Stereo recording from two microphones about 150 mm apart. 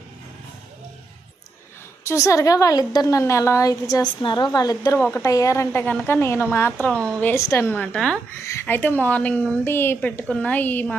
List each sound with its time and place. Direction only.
2.0 s a woman's voice: 20° left (ahead or behind); by 8.2 s 5° left (ahead or behind)
8.4 s a woman's voice: 15° left (ahead or behind)